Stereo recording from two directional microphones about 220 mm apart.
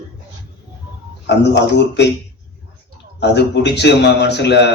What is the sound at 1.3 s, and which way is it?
Speech, 50° left (ahead or behind).